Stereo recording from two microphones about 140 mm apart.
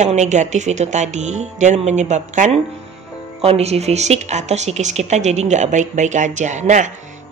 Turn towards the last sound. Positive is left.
turn(degrees=-60)  # may be behind; listen again after turning